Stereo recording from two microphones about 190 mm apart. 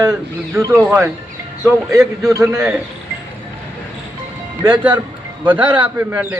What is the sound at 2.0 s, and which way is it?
Speech, centre (ahead or behind).